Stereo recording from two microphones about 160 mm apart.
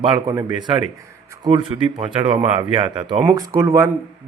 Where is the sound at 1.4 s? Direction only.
30° right (ahead or behind).